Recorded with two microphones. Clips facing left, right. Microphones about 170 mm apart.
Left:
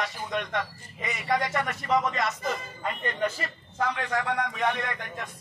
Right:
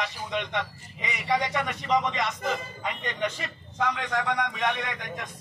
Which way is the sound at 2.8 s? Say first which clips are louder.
Left 1 dB; 5° left (ahead or behind).